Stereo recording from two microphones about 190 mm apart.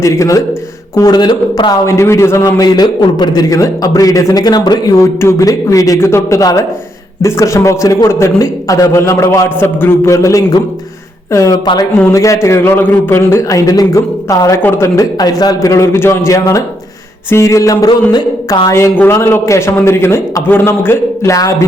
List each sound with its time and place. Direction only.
0.0 s a man's voice: 15° left (ahead or behind)